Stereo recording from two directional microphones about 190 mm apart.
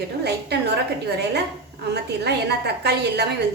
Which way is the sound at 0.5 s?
60° right (ahead or behind).